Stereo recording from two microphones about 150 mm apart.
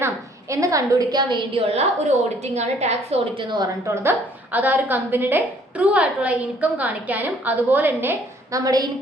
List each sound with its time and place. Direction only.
0.5 s a woman's voice: 20° right (ahead or behind)
1.5 s a woman's voice: 45° right (ahead or behind)
3.3 s a woman's voice: 30° right (ahead or behind)
4.5 s a woman's voice: 10° right (ahead or behind)
8.5 s a woman's voice: 25° right (ahead or behind)